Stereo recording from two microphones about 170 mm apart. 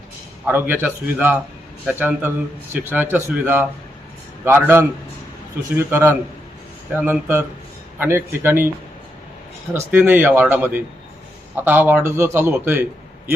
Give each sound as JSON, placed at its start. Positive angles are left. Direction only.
{"t": 0.4, "sound": "a man's voice", "side_deg": -10}
{"t": 9.7, "sound": "a man's voice", "side_deg": -10}